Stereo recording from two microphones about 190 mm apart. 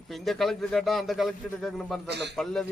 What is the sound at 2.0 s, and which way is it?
Speech, 65° right (ahead or behind).